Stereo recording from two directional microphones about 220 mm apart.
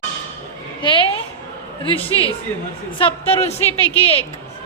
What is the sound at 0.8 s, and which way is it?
A woman's voice, 25° left (ahead or behind).